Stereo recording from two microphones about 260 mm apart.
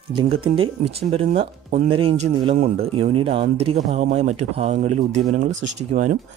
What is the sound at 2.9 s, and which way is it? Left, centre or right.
Speech, right.